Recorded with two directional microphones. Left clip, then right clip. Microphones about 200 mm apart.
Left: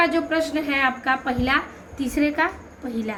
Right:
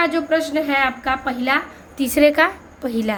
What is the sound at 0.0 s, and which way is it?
A woman's voice, 30° right (ahead or behind).